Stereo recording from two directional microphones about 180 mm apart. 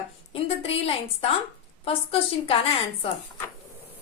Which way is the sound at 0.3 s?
35° left (ahead or behind).